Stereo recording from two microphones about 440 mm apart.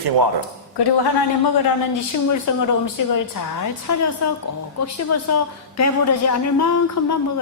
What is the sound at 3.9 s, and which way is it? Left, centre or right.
A woman's voice, left.